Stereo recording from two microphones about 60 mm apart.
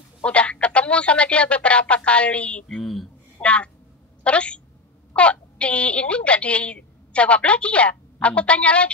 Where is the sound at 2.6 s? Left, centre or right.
Centre.